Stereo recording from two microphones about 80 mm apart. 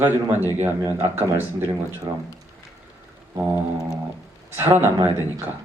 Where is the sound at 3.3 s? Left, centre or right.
Right.